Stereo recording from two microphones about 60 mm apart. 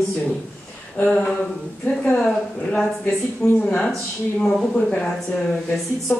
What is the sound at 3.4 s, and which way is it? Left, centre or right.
Speech, centre.